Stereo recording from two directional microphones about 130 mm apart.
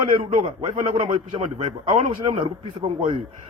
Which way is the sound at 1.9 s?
70° right (ahead or behind).